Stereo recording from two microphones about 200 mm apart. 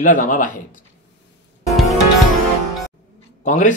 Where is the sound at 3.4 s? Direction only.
40° left (ahead or behind).